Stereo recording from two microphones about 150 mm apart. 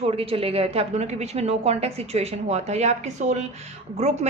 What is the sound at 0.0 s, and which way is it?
A woman's voice, 40° right (ahead or behind).